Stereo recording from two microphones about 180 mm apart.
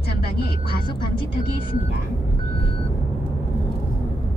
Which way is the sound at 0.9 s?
30° left (ahead or behind).